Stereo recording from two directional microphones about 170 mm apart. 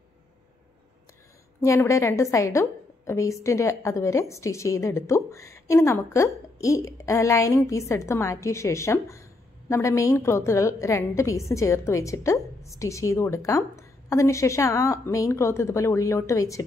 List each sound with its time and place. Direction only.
1.6 s a woman's voice: 15° left (ahead or behind)